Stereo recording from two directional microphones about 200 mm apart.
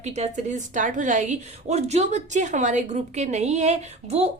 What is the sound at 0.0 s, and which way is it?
A woman's voice, 35° right (ahead or behind).